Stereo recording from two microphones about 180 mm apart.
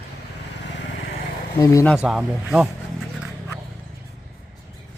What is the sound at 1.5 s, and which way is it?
Speech, 20° left (ahead or behind).